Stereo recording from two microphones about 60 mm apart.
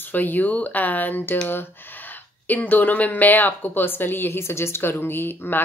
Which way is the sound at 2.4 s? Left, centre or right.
Left.